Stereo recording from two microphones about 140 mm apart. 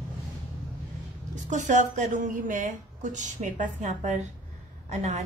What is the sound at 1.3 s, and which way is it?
A woman's voice, 60° right (ahead or behind).